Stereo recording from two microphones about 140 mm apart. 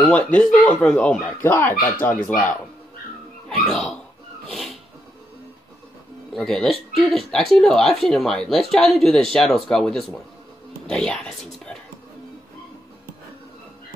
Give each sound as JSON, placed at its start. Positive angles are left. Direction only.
{"t": 0.0, "sound": "speech", "side_deg": 10}
{"t": 4.5, "sound": "a sound", "side_deg": 0}
{"t": 6.3, "sound": "speech", "side_deg": 0}